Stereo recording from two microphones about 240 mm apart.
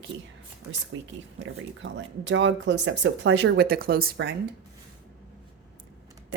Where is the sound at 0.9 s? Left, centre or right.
Right.